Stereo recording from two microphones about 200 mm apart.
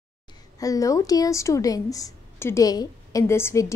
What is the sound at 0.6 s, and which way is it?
A woman's voice, 15° left (ahead or behind).